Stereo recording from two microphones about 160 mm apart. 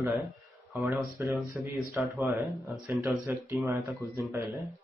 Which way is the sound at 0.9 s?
10° right (ahead or behind).